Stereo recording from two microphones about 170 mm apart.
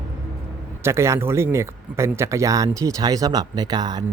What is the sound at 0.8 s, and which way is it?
Speech, 15° right (ahead or behind).